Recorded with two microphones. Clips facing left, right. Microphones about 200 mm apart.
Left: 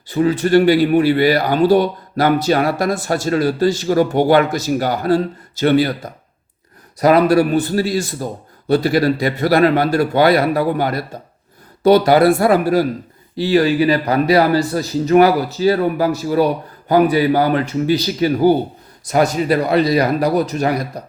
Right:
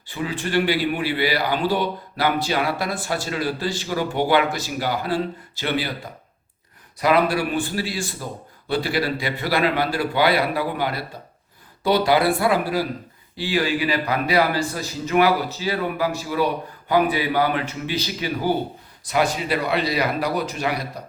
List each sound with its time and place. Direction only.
0.1 s a man's voice: 40° left (ahead or behind)